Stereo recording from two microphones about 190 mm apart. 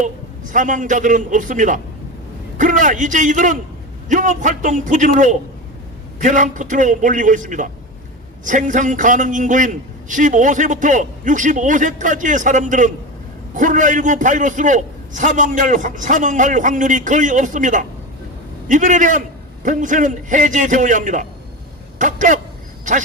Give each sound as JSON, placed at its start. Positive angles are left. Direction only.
{"t": 0.5, "sound": "a man's voice", "side_deg": -40}